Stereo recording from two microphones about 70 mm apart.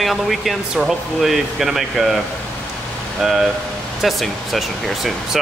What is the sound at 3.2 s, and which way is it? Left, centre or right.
Speech, centre.